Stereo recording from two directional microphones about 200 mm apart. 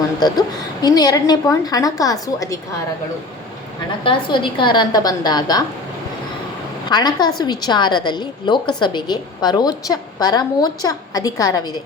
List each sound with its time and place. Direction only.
0.2 s a woman's voice: 20° left (ahead or behind)
4.0 s a woman's voice: 25° left (ahead or behind)
6.8 s a woman's voice: 20° left (ahead or behind)